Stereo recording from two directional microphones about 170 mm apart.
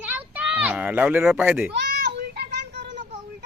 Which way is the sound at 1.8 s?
80° right.